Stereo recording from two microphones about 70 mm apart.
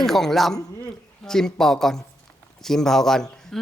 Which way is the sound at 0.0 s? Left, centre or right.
Centre.